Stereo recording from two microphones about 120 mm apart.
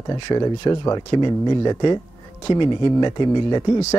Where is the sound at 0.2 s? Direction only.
35° left (ahead or behind).